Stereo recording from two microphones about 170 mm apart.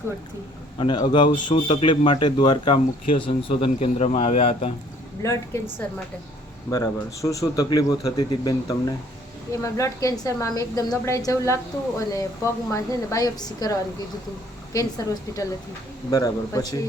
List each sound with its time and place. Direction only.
0.8 s a woman's voice: 30° left (ahead or behind)
6.7 s a woman's voice: 20° left (ahead or behind)